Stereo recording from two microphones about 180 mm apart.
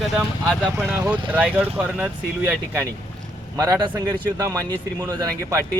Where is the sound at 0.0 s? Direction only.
5° right (ahead or behind).